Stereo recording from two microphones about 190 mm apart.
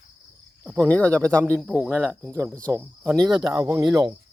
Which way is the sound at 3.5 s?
15° right (ahead or behind).